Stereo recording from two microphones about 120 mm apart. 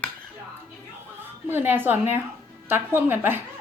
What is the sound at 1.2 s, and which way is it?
A woman's voice, 15° right (ahead or behind).